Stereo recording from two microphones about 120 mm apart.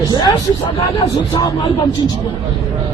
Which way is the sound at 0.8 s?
45° left (ahead or behind).